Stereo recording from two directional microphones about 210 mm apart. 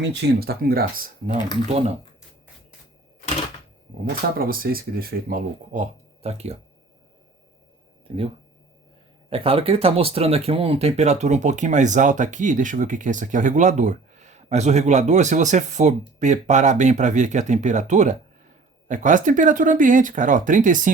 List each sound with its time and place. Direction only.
0.0 s speech: 55° right (ahead or behind)
4.4 s speech: 45° right (ahead or behind)
8.0 s speech: 25° right (ahead or behind)
9.3 s speech: 25° right (ahead or behind)